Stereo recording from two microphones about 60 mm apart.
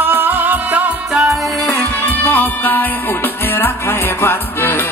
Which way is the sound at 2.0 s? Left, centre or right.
Left.